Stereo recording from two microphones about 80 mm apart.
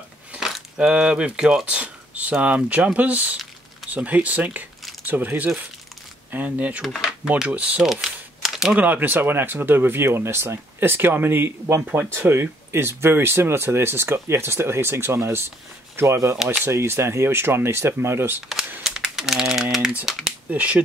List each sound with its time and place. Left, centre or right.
0.4 s speech: centre
6.8 s speech: centre
7.2 s speech: centre
7.8 s camera: centre
8.7 s speech: right
18.8 s speech: centre
20.4 s speech: centre